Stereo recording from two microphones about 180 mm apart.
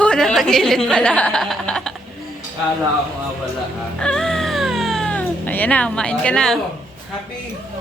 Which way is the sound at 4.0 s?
5° left (ahead or behind).